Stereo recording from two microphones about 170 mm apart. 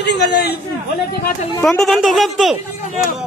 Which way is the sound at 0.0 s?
75° left (ahead or behind).